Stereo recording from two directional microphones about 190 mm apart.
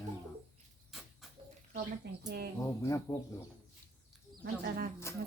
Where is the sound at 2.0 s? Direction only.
60° right (ahead or behind).